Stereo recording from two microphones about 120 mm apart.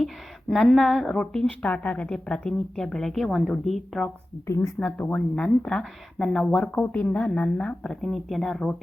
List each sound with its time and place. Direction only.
0.0 s speech: centre (ahead or behind)
4.4 s speech: 25° left (ahead or behind)
4.8 s speech: 10° left (ahead or behind)